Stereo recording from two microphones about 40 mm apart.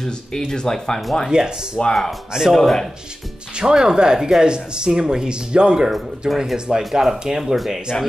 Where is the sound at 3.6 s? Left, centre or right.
Centre.